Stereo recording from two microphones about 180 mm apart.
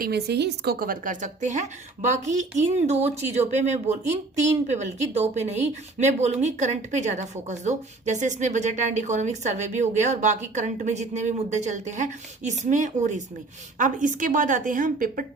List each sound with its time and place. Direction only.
0.0 s a woman's voice: 65° right (ahead or behind)